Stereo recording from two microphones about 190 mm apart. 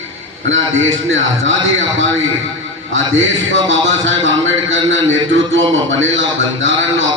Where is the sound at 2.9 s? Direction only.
85° right.